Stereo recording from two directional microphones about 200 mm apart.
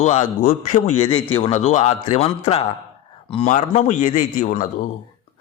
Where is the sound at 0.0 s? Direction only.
35° left (ahead or behind).